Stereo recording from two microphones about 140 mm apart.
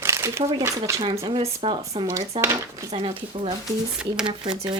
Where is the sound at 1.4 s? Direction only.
45° right (ahead or behind).